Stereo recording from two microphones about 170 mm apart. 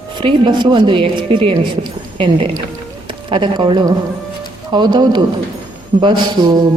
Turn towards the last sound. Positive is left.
turn(degrees=-25)  # may be behind; listen again after turning